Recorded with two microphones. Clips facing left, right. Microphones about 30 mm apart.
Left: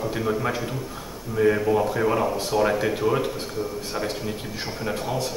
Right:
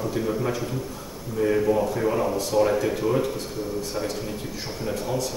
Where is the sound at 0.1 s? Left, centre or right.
Left.